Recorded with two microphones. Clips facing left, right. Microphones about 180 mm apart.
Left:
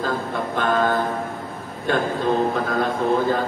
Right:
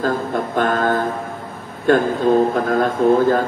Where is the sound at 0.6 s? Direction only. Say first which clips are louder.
Right 2 dB; 45° right (ahead or behind).